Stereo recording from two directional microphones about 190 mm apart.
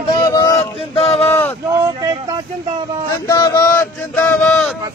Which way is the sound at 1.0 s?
30° left (ahead or behind).